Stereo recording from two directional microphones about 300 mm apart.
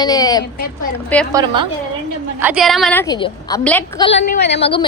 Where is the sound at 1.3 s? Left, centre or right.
Centre.